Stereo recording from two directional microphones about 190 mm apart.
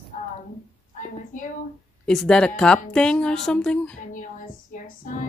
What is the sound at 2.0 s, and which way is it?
Speech, 5° left (ahead or behind).